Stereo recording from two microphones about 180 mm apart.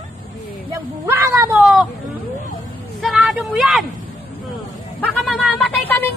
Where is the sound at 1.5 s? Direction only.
5° right (ahead or behind).